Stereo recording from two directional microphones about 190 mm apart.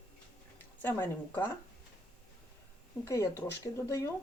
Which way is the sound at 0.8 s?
10° left (ahead or behind).